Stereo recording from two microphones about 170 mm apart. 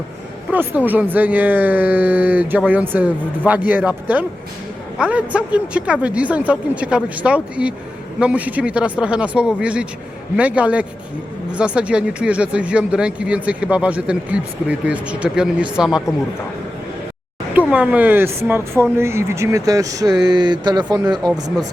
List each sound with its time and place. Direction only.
0.5 s a man's voice: 10° right (ahead or behind)
17.5 s speech: 10° right (ahead or behind)